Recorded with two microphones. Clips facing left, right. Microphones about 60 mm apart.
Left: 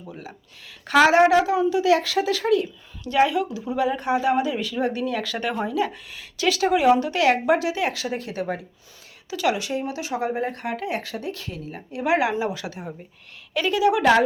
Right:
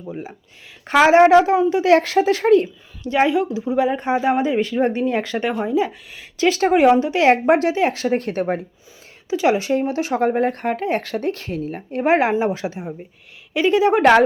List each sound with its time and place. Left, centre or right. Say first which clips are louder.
0.1 s speech: right 9 dB; right
3.0 s speech: right 3 dB; right
7.0 s speech: right 5 dB; right
7.4 s a woman's voice: right 5 dB; right
7.8 s speech: right 7 dB; right
9.3 s speech: right 6 dB; right